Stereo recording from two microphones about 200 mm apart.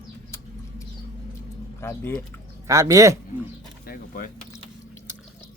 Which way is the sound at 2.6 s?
15° right (ahead or behind).